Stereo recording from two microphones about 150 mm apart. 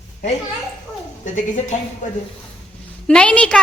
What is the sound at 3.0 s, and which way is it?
Speech, 5° left (ahead or behind).